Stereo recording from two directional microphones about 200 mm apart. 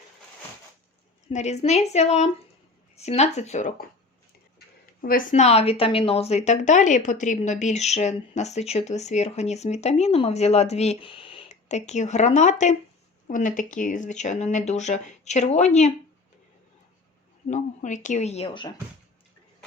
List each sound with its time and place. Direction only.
1.3 s a woman's voice: 35° left (ahead or behind)
5.0 s a woman's voice: 40° left (ahead or behind)
17.5 s a woman's voice: 40° left (ahead or behind)